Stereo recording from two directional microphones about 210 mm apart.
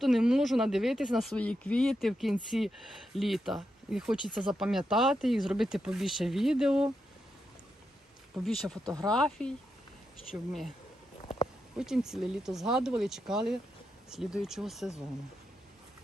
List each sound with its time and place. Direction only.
0.0 s speech: centre (ahead or behind)
8.4 s speech: centre (ahead or behind)
8.8 s speech: 15° right (ahead or behind)
9.0 s speech: 5° left (ahead or behind)
11.8 s speech: centre (ahead or behind)